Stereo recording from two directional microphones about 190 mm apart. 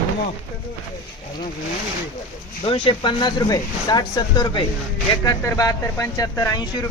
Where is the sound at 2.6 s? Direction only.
30° left (ahead or behind).